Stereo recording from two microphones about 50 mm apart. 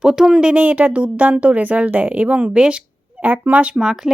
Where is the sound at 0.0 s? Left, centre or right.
Centre.